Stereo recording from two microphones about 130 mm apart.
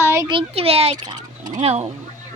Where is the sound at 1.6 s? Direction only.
50° right (ahead or behind).